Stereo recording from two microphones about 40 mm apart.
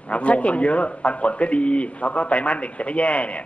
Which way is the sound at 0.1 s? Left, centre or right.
Left.